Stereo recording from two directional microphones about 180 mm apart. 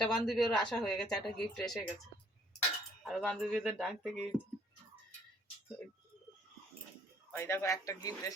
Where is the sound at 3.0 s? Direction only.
Centre (ahead or behind).